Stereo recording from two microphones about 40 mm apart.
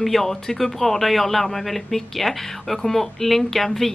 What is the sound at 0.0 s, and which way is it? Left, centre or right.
A man's voice, centre.